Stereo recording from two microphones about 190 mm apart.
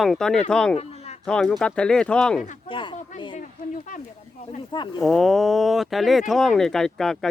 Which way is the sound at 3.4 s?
45° left (ahead or behind).